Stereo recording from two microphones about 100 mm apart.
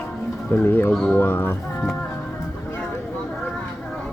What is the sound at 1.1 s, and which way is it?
Speech, 20° left (ahead or behind).